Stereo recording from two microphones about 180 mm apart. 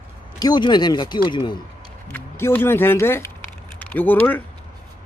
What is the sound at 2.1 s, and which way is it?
Speech, 10° left (ahead or behind).